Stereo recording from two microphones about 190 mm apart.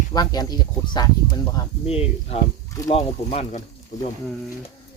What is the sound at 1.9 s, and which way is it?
Speech, 30° left (ahead or behind).